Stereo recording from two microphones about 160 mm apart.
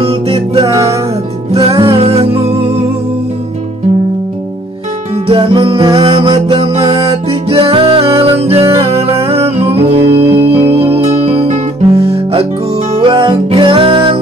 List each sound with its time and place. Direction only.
0.0 s music: 35° right (ahead or behind)
5.1 s music: 35° right (ahead or behind)